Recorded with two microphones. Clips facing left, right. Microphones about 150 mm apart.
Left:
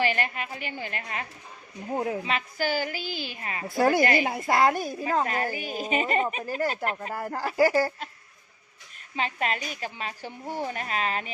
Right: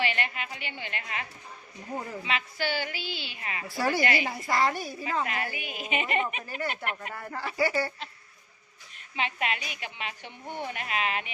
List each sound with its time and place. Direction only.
0.0 s a woman's voice: 40° left (ahead or behind)
9.1 s a woman's voice: 40° left (ahead or behind)